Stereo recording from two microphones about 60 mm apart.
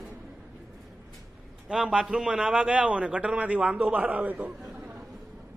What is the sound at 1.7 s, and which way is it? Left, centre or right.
A man's voice, centre.